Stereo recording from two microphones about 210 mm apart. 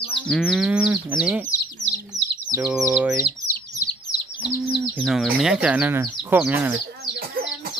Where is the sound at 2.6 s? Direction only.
5° right (ahead or behind).